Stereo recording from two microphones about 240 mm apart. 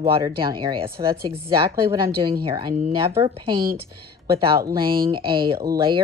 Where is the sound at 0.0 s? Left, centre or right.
Centre.